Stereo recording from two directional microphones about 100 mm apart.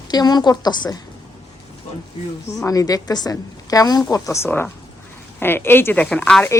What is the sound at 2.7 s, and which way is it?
A woman's voice, 35° left (ahead or behind).